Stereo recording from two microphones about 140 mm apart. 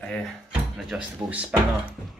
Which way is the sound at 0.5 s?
5° right (ahead or behind).